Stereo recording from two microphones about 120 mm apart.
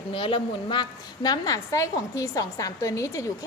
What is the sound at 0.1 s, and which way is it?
A woman's voice, 45° left (ahead or behind).